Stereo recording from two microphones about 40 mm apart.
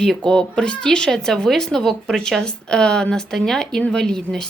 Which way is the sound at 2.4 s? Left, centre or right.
Left.